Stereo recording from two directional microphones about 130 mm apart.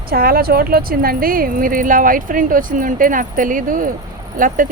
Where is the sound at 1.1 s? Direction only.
90° right.